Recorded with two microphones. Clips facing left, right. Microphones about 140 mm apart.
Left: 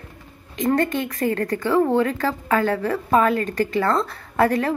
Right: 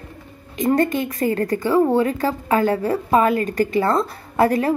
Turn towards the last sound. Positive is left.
turn(degrees=-15)  # may be behind; listen again after turning